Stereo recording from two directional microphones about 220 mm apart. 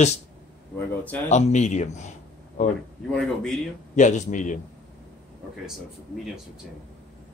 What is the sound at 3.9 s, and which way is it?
Speech, 35° left (ahead or behind).